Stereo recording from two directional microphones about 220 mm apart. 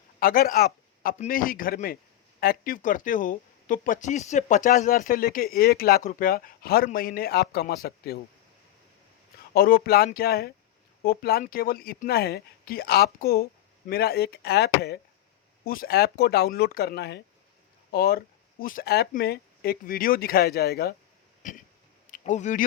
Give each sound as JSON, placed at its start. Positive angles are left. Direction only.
{"t": 0.2, "sound": "speech", "side_deg": 40}
{"t": 9.6, "sound": "speech", "side_deg": 40}
{"t": 21.4, "sound": "a sound", "side_deg": 35}
{"t": 22.1, "sound": "speech", "side_deg": 35}